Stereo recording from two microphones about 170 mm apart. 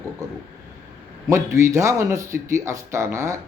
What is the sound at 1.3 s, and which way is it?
Speech, 15° right (ahead or behind).